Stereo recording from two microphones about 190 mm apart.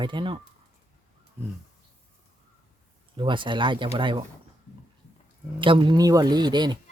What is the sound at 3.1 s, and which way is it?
Speech, 25° right (ahead or behind).